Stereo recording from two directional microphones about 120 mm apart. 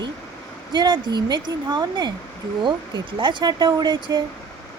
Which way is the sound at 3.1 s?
40° right (ahead or behind).